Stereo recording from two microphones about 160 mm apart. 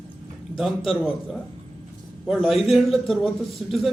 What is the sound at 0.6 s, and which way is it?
Speech, centre (ahead or behind).